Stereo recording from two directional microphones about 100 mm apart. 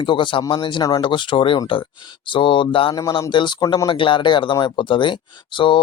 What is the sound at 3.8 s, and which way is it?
Speech, 60° left (ahead or behind).